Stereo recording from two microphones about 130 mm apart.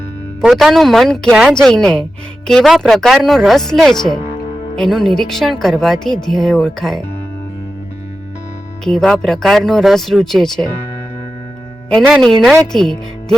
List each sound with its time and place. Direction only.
0.4 s speech: centre (ahead or behind)
8.8 s speech: 5° left (ahead or behind)
11.9 s speech: 5° left (ahead or behind)